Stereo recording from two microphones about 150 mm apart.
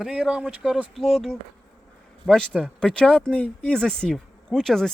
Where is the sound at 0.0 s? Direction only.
5° right (ahead or behind).